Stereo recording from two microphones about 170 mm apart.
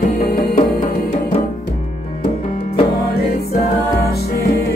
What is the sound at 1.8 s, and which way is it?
Music, 40° left (ahead or behind).